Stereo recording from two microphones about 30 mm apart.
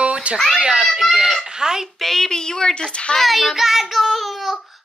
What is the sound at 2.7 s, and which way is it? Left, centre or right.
Speech, left.